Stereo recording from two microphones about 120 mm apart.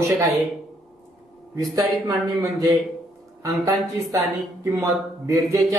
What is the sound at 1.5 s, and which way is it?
A man's voice, 30° right (ahead or behind).